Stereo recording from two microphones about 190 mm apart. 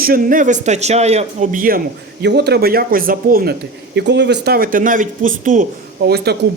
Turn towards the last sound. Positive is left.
turn(degrees=-60)  # may be behind; listen again after turning